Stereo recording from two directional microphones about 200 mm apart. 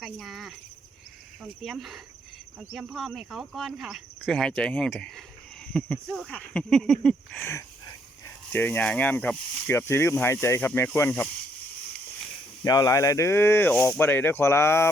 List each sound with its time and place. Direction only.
0.0 s speech: centre (ahead or behind)
1.6 s speech: centre (ahead or behind)
8.5 s speech: 10° left (ahead or behind)
12.6 s speech: 20° left (ahead or behind)